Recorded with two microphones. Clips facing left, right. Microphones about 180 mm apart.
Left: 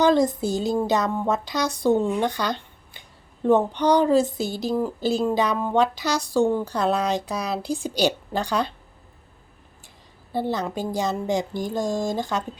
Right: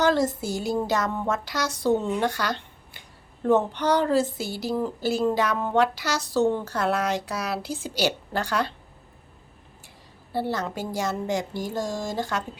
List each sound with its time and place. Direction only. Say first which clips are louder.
0.0 s a woman's voice: left 3 dB; 15° left (ahead or behind)
10.3 s a woman's voice: left 2 dB; 20° left (ahead or behind)